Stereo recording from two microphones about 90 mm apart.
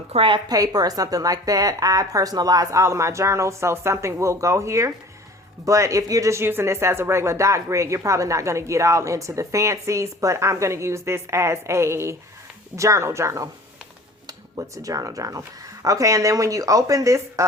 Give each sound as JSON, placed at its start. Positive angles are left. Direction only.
{"t": 0.2, "sound": "a woman's voice", "side_deg": -65}
{"t": 0.4, "sound": "speech", "side_deg": -45}